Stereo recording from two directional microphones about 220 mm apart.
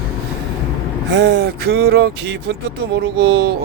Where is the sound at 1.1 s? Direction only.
50° right (ahead or behind).